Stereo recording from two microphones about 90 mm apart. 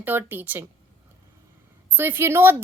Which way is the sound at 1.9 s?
25° right (ahead or behind).